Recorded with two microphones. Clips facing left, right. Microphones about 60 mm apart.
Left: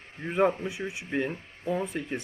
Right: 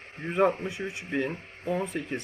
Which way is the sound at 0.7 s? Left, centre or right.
Centre.